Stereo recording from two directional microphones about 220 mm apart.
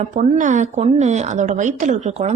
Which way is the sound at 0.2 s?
35° right (ahead or behind).